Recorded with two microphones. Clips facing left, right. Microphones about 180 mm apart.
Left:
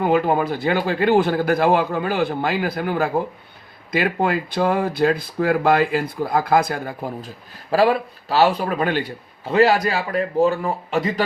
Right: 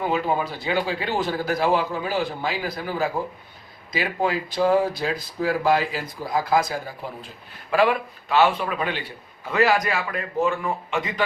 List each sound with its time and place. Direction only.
0.0 s speech: 55° left (ahead or behind)
7.7 s a man's voice: 35° left (ahead or behind)
9.4 s a man's voice: 30° left (ahead or behind)